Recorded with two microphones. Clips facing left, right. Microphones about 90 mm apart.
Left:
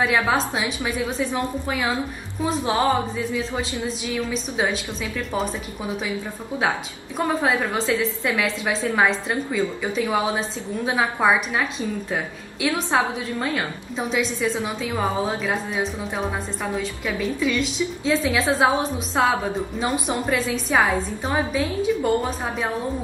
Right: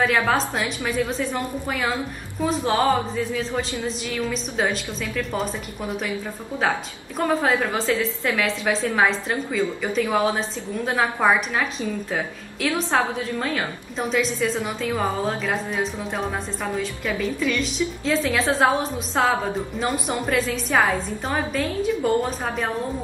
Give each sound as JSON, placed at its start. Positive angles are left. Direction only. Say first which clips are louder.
{"t": 0.0, "sound": "a woman's voice", "louder": "even", "side_deg": 5}
{"t": 7.2, "sound": "a woman's voice", "louder": "right 1 dB", "side_deg": 5}